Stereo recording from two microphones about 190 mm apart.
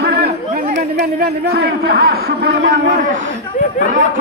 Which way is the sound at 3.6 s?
40° left (ahead or behind).